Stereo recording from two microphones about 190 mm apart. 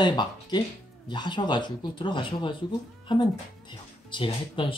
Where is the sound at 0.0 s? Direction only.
25° left (ahead or behind).